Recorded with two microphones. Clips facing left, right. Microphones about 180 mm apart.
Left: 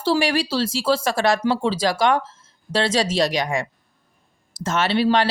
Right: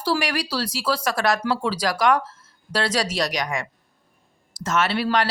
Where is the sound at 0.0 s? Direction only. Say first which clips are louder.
Left 4 dB; 25° left (ahead or behind).